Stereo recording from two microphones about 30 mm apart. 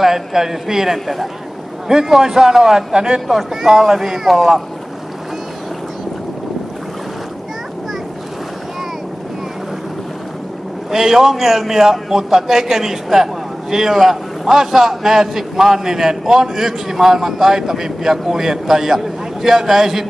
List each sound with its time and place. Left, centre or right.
0.0 s a man's voice: centre
0.9 s speech: centre
1.9 s a man's voice: centre
3.6 s a man's voice: centre
10.9 s a man's voice: centre